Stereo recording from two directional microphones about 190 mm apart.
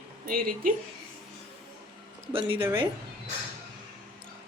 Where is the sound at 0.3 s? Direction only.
50° right (ahead or behind).